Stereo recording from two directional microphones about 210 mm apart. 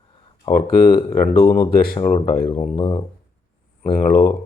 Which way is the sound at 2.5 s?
25° left (ahead or behind).